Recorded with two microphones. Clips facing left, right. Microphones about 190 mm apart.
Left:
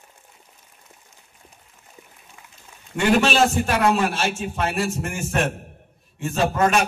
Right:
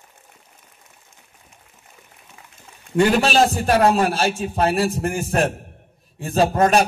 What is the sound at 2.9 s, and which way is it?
A man's voice, 35° right (ahead or behind).